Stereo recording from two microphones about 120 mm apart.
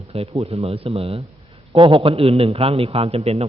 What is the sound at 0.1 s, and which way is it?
A man's voice, 55° right (ahead or behind).